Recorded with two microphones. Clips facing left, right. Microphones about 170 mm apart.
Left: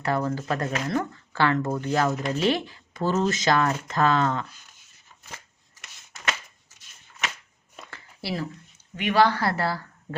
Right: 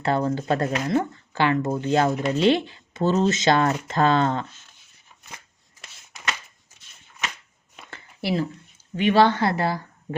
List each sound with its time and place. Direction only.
0.0 s speech: 30° right (ahead or behind)
0.9 s speech: 20° right (ahead or behind)
7.9 s a sound: 25° right (ahead or behind)
9.0 s speech: 30° right (ahead or behind)